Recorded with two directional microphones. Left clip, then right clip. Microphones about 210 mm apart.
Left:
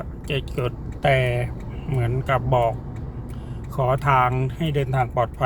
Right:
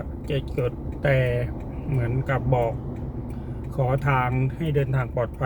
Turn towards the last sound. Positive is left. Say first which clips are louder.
# left 5 dB
turn(degrees=40)  # may be behind; listen again after turning